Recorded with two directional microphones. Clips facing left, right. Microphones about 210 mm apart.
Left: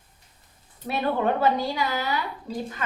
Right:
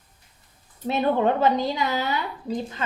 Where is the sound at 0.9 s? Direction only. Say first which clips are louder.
Right 3 dB; 20° right (ahead or behind).